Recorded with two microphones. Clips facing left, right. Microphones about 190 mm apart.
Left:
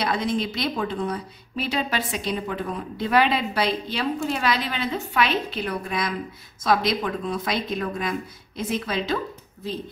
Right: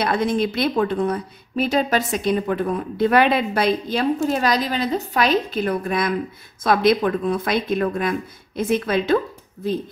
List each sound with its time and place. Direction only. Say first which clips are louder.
0.0 s a woman's voice: right 4 dB; 55° right (ahead or behind)